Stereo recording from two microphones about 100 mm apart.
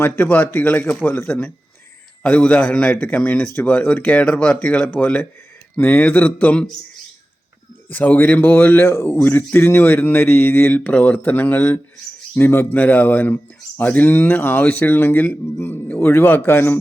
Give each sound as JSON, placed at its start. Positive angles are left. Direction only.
{"t": 0.0, "sound": "speech", "side_deg": 20}
{"t": 7.9, "sound": "speech", "side_deg": 15}